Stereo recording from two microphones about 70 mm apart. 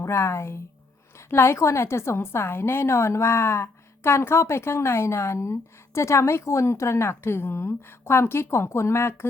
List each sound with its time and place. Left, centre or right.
0.0 s a woman's voice: left